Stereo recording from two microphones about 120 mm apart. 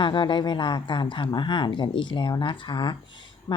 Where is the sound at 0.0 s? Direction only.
40° left (ahead or behind).